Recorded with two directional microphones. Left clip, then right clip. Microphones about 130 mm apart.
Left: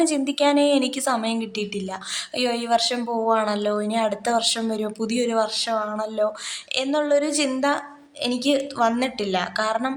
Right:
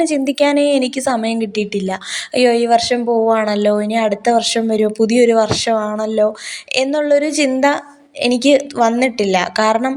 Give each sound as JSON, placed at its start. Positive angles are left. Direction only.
{"t": 0.0, "sound": "a woman's voice", "side_deg": -35}